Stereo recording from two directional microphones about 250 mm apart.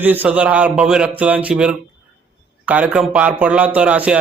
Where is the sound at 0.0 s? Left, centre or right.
Centre.